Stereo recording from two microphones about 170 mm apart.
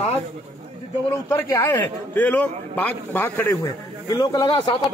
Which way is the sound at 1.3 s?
15° left (ahead or behind).